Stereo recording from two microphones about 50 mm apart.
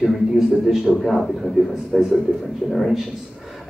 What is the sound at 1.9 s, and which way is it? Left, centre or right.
A man's voice, centre.